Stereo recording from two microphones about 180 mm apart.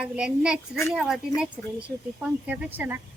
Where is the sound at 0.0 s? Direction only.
5° right (ahead or behind).